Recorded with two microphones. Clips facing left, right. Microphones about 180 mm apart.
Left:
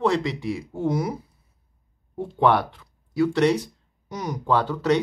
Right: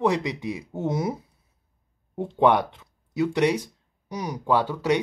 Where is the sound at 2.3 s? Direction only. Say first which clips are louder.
Even; 20° right (ahead or behind).